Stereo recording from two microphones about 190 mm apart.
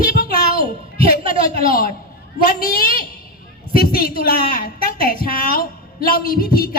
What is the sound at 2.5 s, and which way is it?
A woman's voice, 50° left (ahead or behind).